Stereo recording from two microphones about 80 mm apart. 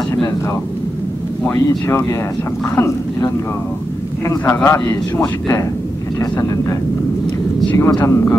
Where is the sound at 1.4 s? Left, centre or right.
Left.